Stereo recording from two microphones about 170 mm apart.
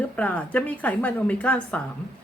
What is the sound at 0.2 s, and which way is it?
A woman's voice, 10° left (ahead or behind).